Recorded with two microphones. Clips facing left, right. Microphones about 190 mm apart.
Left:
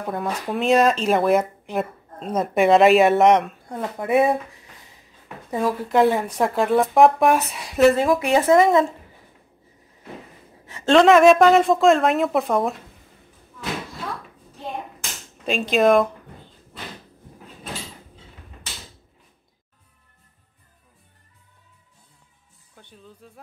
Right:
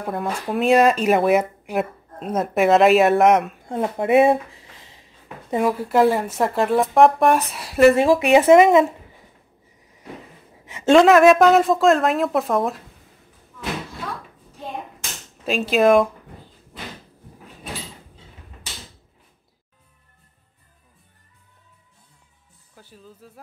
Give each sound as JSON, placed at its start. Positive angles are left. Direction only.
{"t": 0.0, "sound": "speech", "side_deg": 0}
{"t": 3.6, "sound": "speech", "side_deg": -25}
{"t": 5.7, "sound": "speech", "side_deg": -5}
{"t": 7.9, "sound": "speech", "side_deg": -25}
{"t": 10.6, "sound": "a sound", "side_deg": -20}
{"t": 11.0, "sound": "speech", "side_deg": 0}
{"t": 15.4, "sound": "speech", "side_deg": -5}
{"t": 22.8, "sound": "speech", "side_deg": -5}